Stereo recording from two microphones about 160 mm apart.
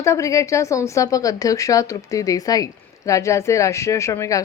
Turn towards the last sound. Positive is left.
turn(degrees=20)  # may be behind; listen again after turning